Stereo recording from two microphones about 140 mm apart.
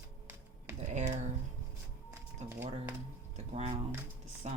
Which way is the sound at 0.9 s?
55° right (ahead or behind).